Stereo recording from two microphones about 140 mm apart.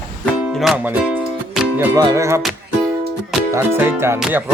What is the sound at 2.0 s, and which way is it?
Music, 25° right (ahead or behind).